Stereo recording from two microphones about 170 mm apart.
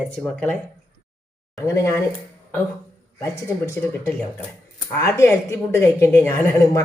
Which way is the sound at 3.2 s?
15° left (ahead or behind).